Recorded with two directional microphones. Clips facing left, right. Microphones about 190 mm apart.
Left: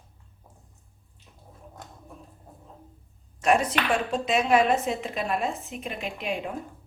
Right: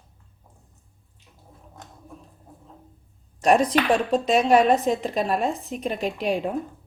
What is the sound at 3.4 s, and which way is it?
A woman's voice, 35° right (ahead or behind).